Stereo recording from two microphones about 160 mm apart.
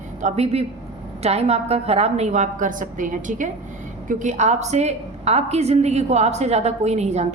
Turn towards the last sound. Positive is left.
turn(degrees=-45)  # may be behind; listen again after turning